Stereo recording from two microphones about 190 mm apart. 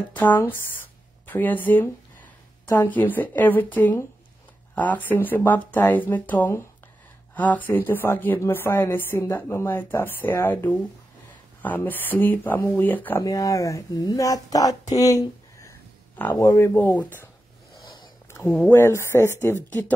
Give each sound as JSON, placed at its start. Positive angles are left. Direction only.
{"t": 0.1, "sound": "speech", "side_deg": 10}
{"t": 18.3, "sound": "a sound", "side_deg": 10}
{"t": 18.7, "sound": "speech", "side_deg": 15}